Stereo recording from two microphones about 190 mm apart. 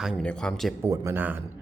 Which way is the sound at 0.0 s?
Centre (ahead or behind).